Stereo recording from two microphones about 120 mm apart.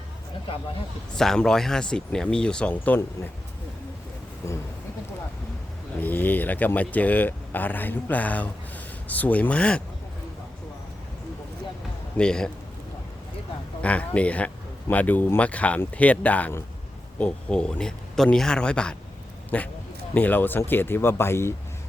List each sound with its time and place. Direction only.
1.1 s speech: 5° left (ahead or behind)
4.4 s a man's voice: 25° left (ahead or behind)
6.0 s speech: 15° left (ahead or behind)
12.1 s speech: 5° left (ahead or behind)
13.8 s a man's voice: 10° left (ahead or behind)